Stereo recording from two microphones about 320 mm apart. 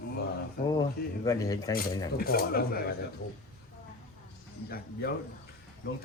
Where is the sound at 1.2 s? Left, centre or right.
Centre.